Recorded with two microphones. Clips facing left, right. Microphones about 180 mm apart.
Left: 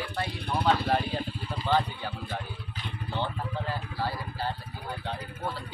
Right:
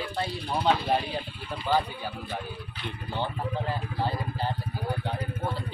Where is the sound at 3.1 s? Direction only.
15° right (ahead or behind).